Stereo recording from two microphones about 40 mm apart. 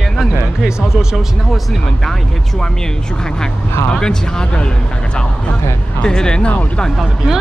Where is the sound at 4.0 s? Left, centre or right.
Centre.